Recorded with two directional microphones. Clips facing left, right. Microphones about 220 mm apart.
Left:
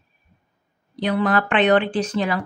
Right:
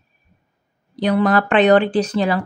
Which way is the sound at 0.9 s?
40° right (ahead or behind).